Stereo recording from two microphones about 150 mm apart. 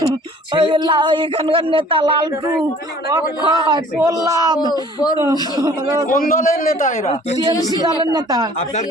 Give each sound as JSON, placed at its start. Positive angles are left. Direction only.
{"t": 0.1, "sound": "a man's voice", "side_deg": -35}
{"t": 4.6, "sound": "speech", "side_deg": 25}
{"t": 5.2, "sound": "a man's voice", "side_deg": -25}
{"t": 6.1, "sound": "a man's voice", "side_deg": 70}
{"t": 8.1, "sound": "a man's voice", "side_deg": -25}